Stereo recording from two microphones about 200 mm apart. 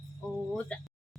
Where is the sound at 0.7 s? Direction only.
5° left (ahead or behind).